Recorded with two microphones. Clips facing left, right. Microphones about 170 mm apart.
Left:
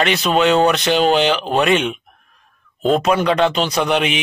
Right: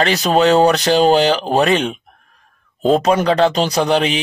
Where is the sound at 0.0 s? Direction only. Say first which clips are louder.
Right 2 dB; 35° right (ahead or behind).